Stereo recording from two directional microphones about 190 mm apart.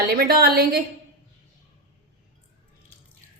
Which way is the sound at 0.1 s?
50° right (ahead or behind).